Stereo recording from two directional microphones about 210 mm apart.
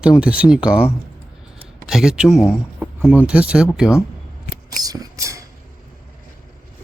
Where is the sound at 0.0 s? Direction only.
5° right (ahead or behind).